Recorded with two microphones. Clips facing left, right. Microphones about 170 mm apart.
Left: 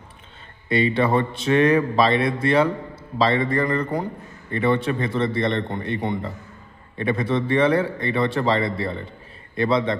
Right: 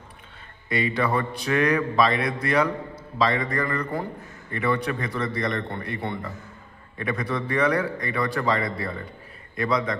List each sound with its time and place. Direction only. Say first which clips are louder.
0.7 s speech: left 5 dB; 25° left (ahead or behind)
7.0 s speech: left 5 dB; 25° left (ahead or behind)